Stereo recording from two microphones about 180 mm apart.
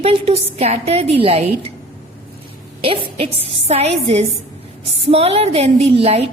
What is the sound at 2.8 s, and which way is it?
A woman's voice, 30° right (ahead or behind).